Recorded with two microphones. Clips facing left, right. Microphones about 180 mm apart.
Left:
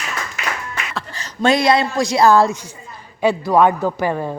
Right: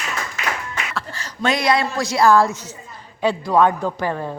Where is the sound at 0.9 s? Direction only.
20° left (ahead or behind).